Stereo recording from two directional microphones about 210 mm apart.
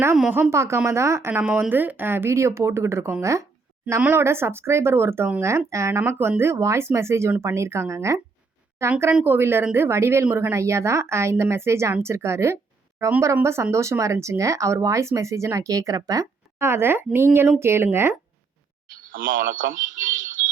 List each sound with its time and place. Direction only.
0.0 s speech: 10° right (ahead or behind)
18.9 s speech: 40° right (ahead or behind)